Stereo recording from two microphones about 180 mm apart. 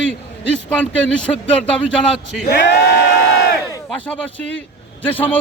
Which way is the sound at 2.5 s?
70° left (ahead or behind).